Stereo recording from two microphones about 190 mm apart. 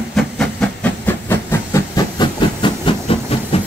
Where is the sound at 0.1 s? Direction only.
5° left (ahead or behind).